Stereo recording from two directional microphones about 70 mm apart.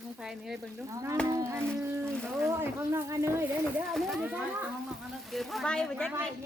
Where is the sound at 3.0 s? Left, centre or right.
Right.